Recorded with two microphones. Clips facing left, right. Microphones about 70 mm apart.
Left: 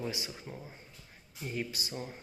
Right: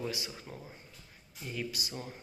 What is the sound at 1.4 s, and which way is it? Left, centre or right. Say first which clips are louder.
Speech: left 1 dB; left.